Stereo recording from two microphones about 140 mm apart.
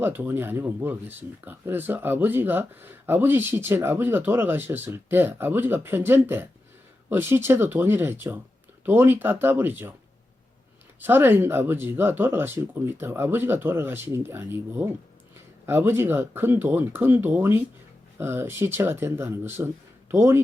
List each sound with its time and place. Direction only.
0.0 s speech: 15° right (ahead or behind)
11.0 s speech: 15° right (ahead or behind)